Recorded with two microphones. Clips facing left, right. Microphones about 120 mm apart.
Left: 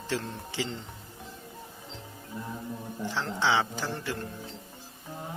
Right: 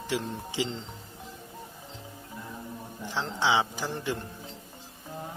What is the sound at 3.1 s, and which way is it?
Speech, 15° right (ahead or behind).